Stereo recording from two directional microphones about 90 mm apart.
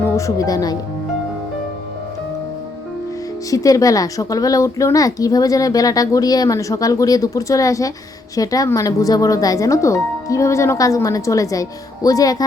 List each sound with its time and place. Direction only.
0.0 s speech: 35° left (ahead or behind)
3.5 s a woman's voice: 40° left (ahead or behind)